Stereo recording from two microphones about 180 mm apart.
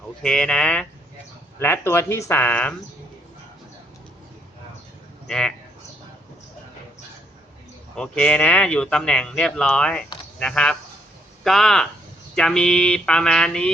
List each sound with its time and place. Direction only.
0.2 s speech: 5° left (ahead or behind)
5.3 s speech: 5° left (ahead or behind)
7.9 s speech: 5° left (ahead or behind)